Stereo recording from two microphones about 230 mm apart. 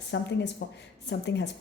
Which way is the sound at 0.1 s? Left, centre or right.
Left.